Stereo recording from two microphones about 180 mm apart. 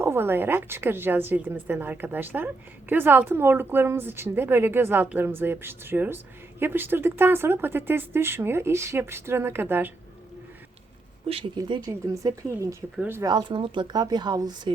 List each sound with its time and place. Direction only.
0.0 s speech: 15° right (ahead or behind)
11.3 s speech: 30° right (ahead or behind)